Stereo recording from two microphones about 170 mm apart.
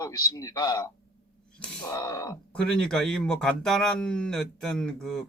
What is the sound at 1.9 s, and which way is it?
Speech, 20° left (ahead or behind).